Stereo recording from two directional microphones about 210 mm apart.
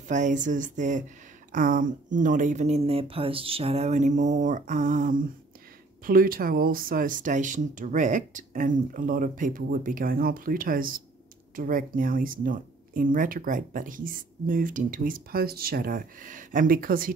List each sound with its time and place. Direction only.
0.1 s speech: 35° right (ahead or behind)